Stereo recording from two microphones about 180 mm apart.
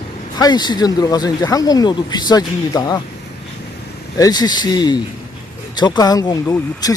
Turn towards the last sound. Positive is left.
turn(degrees=20)  # may be behind; listen again after turning